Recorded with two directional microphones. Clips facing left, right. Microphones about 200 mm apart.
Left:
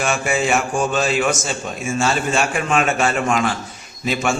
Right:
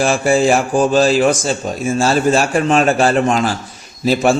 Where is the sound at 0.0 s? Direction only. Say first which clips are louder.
Right 7 dB; 30° right (ahead or behind).